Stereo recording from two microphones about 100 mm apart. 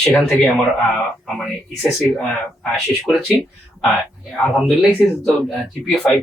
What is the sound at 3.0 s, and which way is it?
Speech, centre (ahead or behind).